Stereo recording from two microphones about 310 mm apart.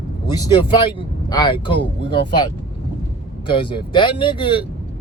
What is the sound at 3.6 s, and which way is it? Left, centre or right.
Speech, centre.